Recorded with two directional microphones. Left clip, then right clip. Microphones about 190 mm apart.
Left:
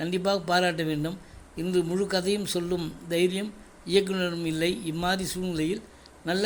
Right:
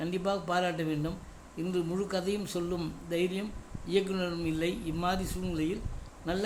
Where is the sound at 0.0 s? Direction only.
20° left (ahead or behind).